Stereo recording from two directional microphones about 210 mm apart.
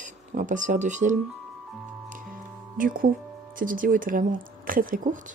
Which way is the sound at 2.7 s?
40° right (ahead or behind).